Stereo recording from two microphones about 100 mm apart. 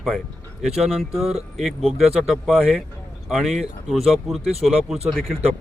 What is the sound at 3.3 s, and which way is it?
Speech, 5° right (ahead or behind).